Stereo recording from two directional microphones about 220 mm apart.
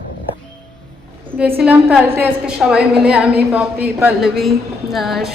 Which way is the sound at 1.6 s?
5° right (ahead or behind).